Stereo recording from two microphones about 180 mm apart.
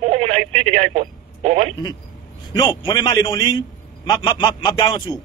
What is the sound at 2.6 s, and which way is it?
A man's voice, 25° left (ahead or behind).